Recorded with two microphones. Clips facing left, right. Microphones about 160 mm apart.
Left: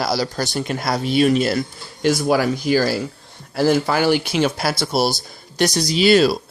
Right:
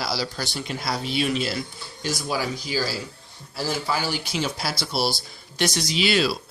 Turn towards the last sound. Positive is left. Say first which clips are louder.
# left 8 dB
turn(degrees=40)  # may be behind; listen again after turning